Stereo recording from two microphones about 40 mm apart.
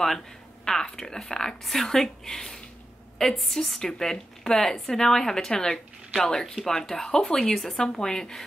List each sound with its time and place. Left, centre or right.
0.7 s a woman's voice: centre
1.6 s a woman's voice: centre
6.4 s speech: centre
6.7 s a woman's voice: centre